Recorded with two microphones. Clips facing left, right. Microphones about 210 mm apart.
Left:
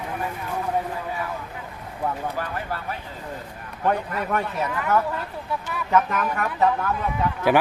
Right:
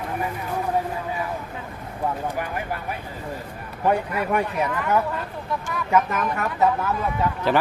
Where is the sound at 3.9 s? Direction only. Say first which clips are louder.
Right 2 dB; 10° right (ahead or behind).